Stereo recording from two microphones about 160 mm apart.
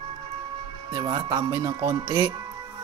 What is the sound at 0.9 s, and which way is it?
Speech, 25° right (ahead or behind).